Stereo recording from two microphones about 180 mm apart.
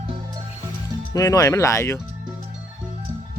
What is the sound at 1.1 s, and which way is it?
Speech, 20° left (ahead or behind).